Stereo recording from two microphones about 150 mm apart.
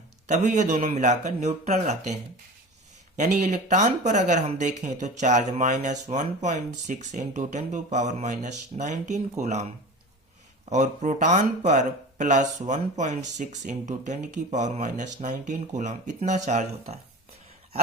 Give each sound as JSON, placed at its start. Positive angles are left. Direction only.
{"t": 0.3, "sound": "speech", "side_deg": -50}
{"t": 3.5, "sound": "speech", "side_deg": -55}